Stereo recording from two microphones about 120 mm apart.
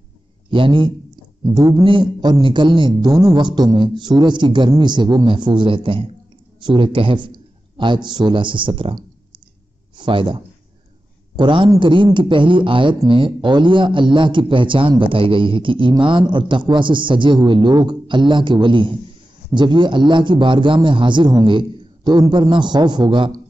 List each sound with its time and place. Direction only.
0.5 s a man's voice: 45° right (ahead or behind)
1.4 s a man's voice: 35° right (ahead or behind)
1.9 s a man's voice: 45° right (ahead or behind)
9.9 s a man's voice: 45° right (ahead or behind)